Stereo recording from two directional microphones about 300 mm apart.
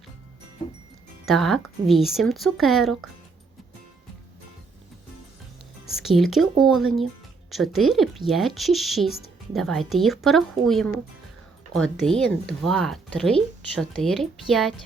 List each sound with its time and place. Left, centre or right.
1.2 s speech: centre
5.9 s speech: centre